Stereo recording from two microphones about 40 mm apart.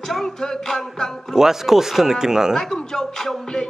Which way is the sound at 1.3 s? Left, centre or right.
Centre.